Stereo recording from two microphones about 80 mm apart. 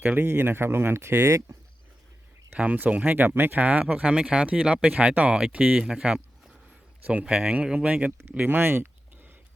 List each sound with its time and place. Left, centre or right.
0.0 s speech: right
2.6 s speech: centre
5.9 s a sound: centre
7.0 s speech: centre